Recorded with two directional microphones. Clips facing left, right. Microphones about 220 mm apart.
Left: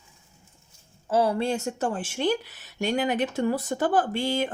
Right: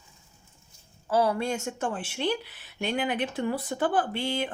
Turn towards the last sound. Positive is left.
turn(degrees=45)  # may be behind; listen again after turning